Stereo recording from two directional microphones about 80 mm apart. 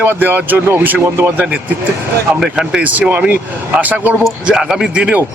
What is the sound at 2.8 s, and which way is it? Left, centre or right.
Speech, centre.